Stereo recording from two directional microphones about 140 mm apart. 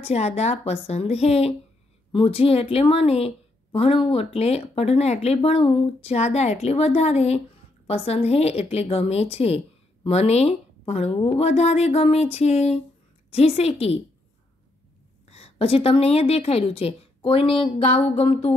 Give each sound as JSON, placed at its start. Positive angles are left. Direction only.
{"t": 0.0, "sound": "a woman's voice", "side_deg": 50}
{"t": 15.2, "sound": "a woman's voice", "side_deg": 45}